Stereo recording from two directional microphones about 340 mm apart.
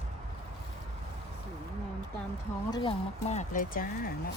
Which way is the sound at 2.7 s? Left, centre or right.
Centre.